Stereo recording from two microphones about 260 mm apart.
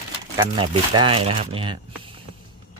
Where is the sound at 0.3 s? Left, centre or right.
Centre.